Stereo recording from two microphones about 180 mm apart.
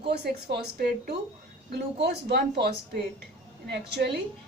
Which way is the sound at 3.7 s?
70° right (ahead or behind).